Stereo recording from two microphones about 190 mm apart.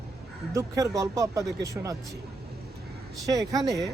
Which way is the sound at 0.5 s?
15° right (ahead or behind).